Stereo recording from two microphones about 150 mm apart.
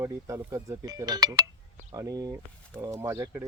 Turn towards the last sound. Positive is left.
turn(degrees=-20)  # may be behind; listen again after turning